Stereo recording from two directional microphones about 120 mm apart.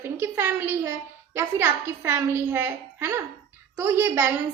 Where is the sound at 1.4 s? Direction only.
20° right (ahead or behind).